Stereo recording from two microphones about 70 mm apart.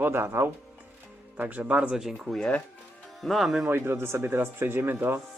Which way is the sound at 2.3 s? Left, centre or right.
Centre.